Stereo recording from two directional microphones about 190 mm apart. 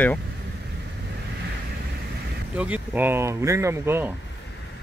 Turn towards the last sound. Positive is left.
turn(degrees=-10)  # may be behind; listen again after turning